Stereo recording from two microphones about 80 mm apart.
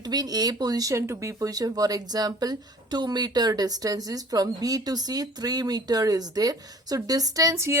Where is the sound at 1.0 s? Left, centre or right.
Right.